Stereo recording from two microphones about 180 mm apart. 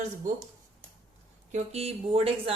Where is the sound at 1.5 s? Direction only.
35° right (ahead or behind).